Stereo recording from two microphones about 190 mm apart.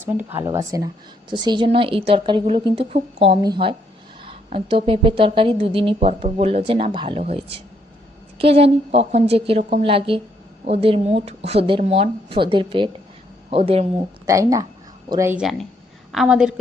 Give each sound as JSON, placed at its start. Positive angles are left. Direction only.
{"t": 0.1, "sound": "a woman's voice", "side_deg": -10}
{"t": 14.3, "sound": "a woman's voice", "side_deg": -15}